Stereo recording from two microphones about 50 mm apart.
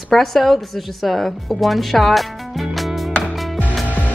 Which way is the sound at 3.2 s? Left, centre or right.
Centre.